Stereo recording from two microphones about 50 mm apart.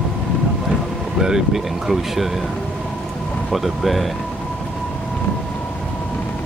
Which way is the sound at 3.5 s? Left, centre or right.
Centre.